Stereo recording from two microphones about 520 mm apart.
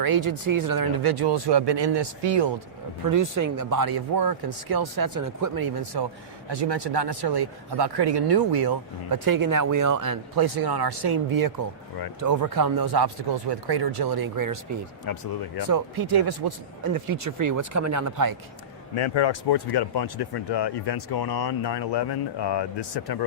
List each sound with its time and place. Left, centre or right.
0.0 s speech: right
3.0 s speech: right
15.0 s speech: left
15.7 s speech: right
18.9 s speech: left